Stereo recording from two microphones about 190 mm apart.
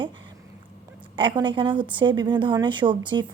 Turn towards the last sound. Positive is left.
turn(degrees=-25)  # may be behind; listen again after turning